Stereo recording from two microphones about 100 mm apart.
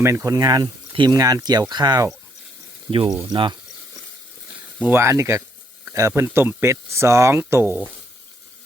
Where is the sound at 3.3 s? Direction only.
45° right (ahead or behind).